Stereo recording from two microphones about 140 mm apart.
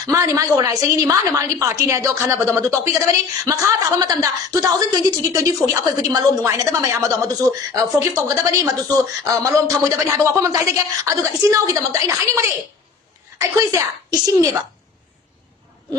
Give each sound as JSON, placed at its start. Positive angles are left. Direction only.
{"t": 0.0, "sound": "a woman's voice", "side_deg": -25}